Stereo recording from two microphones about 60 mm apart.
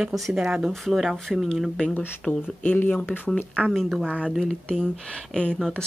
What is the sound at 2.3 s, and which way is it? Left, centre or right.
Speech, left.